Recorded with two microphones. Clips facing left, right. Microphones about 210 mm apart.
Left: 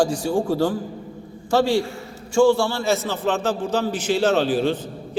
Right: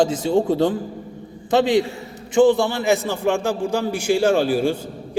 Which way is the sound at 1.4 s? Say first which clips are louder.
Right 2 dB; 20° right (ahead or behind).